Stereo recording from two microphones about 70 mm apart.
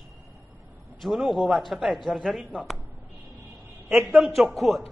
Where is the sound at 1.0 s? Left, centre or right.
Centre.